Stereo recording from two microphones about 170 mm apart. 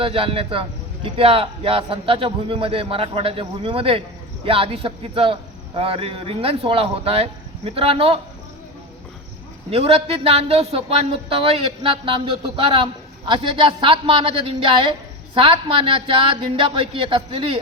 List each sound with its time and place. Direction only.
0.0 s speech: 30° right (ahead or behind)
9.6 s speech: 35° right (ahead or behind)